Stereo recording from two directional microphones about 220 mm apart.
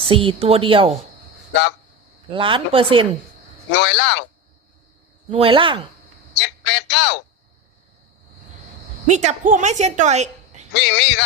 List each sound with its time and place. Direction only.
0.1 s speech: 25° right (ahead or behind)
2.3 s speech: 25° right (ahead or behind)
3.7 s a man's voice: 50° left (ahead or behind)
5.3 s speech: 25° right (ahead or behind)
6.3 s a man's voice: 50° left (ahead or behind)
9.0 s a woman's voice: 35° right (ahead or behind)
10.8 s a man's voice: 50° left (ahead or behind)